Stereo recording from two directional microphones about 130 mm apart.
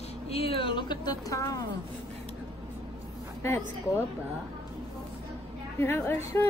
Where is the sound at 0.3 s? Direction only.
50° left (ahead or behind); by 1.6 s 25° left (ahead or behind).